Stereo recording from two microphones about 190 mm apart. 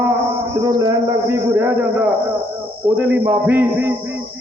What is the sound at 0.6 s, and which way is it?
A man's voice, 15° right (ahead or behind).